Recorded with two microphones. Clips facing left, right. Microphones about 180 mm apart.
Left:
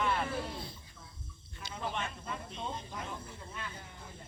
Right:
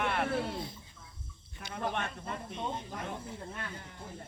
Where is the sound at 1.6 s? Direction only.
55° right (ahead or behind).